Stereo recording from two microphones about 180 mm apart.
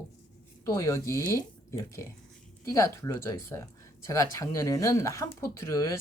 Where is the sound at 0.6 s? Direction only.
15° left (ahead or behind).